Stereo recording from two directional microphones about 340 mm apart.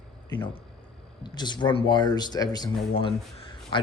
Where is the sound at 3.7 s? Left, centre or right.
Centre.